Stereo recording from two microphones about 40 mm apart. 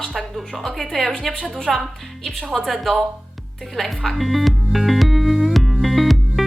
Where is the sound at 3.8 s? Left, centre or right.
Centre.